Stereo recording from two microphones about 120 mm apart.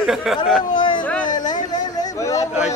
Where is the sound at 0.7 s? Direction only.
40° left (ahead or behind).